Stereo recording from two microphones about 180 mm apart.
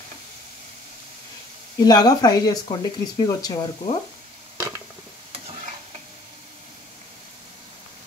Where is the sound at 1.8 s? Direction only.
20° left (ahead or behind).